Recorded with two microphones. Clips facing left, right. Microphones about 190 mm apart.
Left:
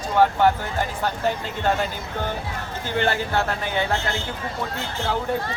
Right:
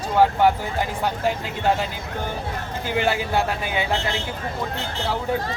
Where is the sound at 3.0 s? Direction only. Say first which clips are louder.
Even; 10° right (ahead or behind).